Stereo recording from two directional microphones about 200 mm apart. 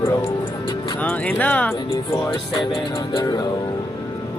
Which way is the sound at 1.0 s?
10° left (ahead or behind).